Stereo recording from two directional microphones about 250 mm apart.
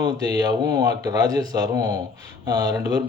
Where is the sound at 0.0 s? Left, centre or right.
Centre.